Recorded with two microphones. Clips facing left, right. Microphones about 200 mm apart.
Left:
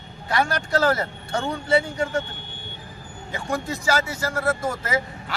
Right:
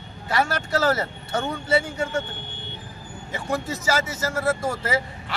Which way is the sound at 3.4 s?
5° right (ahead or behind).